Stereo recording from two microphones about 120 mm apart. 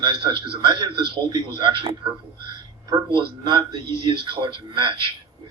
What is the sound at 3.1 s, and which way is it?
A man's voice, 40° right (ahead or behind).